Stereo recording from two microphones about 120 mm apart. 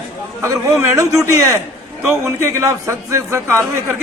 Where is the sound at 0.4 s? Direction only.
25° right (ahead or behind).